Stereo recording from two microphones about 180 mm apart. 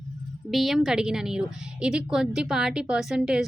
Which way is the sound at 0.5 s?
Centre (ahead or behind).